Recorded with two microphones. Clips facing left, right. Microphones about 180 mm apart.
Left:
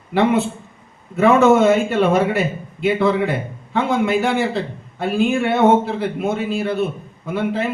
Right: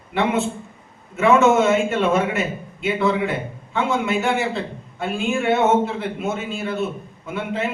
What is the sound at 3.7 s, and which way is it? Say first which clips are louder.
Speech: left 3 dB; 35° left (ahead or behind).